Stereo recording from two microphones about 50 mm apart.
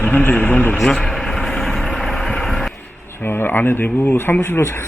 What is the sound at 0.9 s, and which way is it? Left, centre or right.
Speech, centre.